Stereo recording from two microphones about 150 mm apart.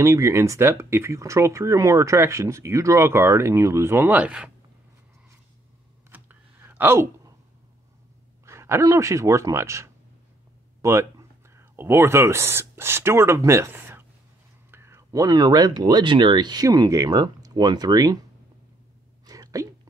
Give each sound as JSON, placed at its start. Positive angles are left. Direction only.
{"t": 0.0, "sound": "speech", "side_deg": -20}
{"t": 6.0, "sound": "computer keyboard", "side_deg": -15}
{"t": 8.5, "sound": "speech", "side_deg": -20}
{"t": 19.2, "sound": "whispering", "side_deg": -25}